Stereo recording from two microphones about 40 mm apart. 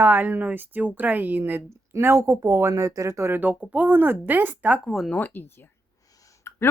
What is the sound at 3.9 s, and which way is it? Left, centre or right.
Speech, right.